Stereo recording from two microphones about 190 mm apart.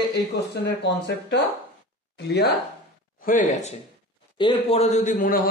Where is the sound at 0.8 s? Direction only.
65° left (ahead or behind).